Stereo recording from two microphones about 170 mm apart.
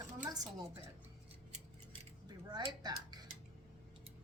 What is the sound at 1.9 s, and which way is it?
Cutlery, 25° right (ahead or behind).